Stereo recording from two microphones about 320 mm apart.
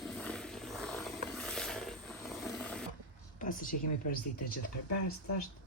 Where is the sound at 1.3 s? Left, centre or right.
Centre.